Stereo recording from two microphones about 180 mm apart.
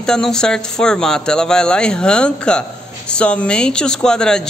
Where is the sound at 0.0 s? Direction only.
5° left (ahead or behind).